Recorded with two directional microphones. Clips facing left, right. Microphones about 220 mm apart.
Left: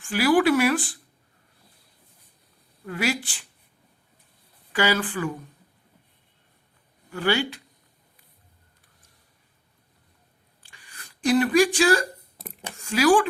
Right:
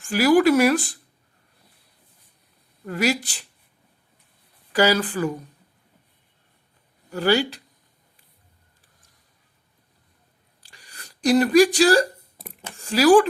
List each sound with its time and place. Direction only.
0.0 s speech: 40° right (ahead or behind)
2.8 s speech: 40° right (ahead or behind)
4.7 s speech: 40° right (ahead or behind)
7.1 s speech: 40° right (ahead or behind)
10.6 s a sound: 40° right (ahead or behind)
12.7 s speech: 35° right (ahead or behind)